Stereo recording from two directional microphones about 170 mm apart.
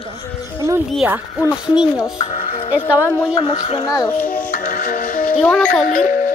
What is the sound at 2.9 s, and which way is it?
Speech, 20° left (ahead or behind).